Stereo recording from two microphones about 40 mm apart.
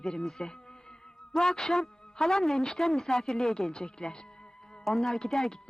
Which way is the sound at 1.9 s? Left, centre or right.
Centre.